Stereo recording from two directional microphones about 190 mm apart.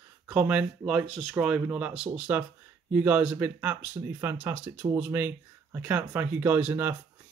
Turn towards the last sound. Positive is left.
turn(degrees=-10)  # may be behind; listen again after turning